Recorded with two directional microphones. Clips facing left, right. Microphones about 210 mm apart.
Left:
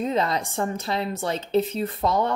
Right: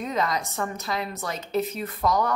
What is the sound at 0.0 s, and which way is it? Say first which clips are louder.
A woman's voice: left 3 dB; 30° left (ahead or behind).